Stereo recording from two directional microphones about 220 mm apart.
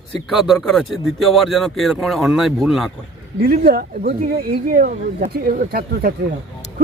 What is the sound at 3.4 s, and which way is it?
Speech, 40° right (ahead or behind).